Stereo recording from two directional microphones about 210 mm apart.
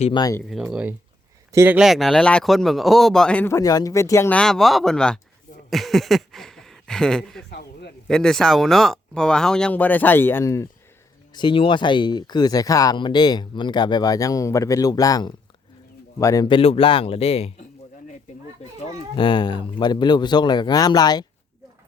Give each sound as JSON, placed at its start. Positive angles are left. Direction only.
{"t": 0.0, "sound": "speech", "side_deg": 20}
{"t": 0.6, "sound": "a man's voice", "side_deg": -5}
{"t": 7.5, "sound": "a sound", "side_deg": 50}
{"t": 8.0, "sound": "a man's voice", "side_deg": 5}